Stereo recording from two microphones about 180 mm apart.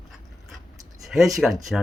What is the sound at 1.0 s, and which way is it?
Speech, centre (ahead or behind).